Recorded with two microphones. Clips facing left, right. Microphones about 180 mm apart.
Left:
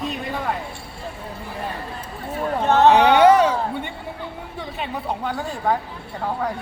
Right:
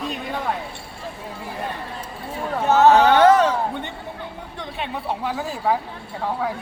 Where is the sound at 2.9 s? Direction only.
10° left (ahead or behind).